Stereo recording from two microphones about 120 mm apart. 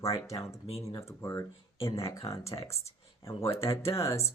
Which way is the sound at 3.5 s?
55° left (ahead or behind).